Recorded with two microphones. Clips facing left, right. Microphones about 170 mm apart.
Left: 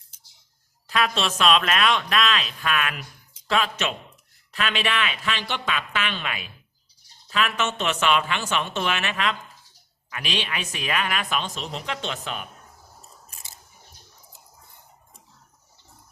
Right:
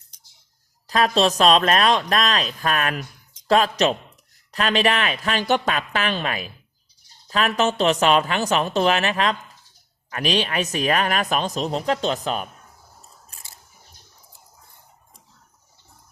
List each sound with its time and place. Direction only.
0.9 s a man's voice: 40° right (ahead or behind)